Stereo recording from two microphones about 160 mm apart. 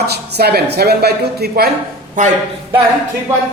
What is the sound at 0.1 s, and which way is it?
Speech, 90° right.